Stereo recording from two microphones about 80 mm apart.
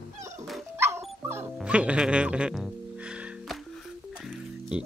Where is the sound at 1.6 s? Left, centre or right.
Centre.